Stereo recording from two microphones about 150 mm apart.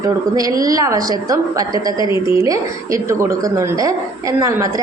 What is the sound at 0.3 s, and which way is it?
A woman's voice, 25° right (ahead or behind).